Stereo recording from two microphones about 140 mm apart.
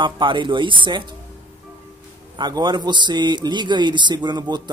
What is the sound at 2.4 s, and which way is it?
Speech, 30° right (ahead or behind).